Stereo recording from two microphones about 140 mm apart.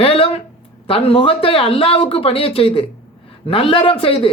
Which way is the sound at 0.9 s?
40° left (ahead or behind).